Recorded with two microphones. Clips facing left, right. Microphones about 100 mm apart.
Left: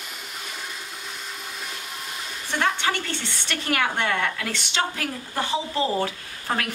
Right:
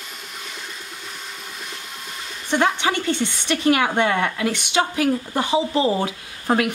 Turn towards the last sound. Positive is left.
turn(degrees=-20)  # may be behind; listen again after turning